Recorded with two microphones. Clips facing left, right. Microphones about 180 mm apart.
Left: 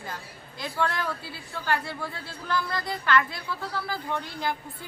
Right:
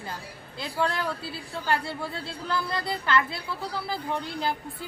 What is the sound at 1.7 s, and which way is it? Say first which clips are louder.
A woman's voice: right 1 dB; 25° right (ahead or behind).